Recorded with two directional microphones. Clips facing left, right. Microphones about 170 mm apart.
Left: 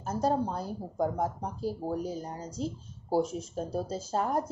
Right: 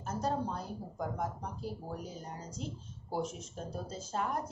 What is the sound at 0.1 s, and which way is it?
Speech, 35° left (ahead or behind).